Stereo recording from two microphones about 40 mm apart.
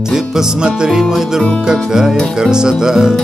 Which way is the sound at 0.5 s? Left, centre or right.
Centre.